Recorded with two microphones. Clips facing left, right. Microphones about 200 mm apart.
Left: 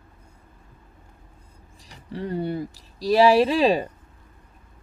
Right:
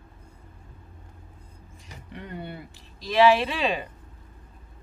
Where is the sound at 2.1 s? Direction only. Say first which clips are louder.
Left 10 dB; 35° left (ahead or behind).